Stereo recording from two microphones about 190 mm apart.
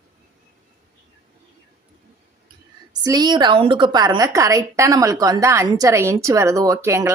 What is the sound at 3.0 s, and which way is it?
A woman's voice, 20° right (ahead or behind).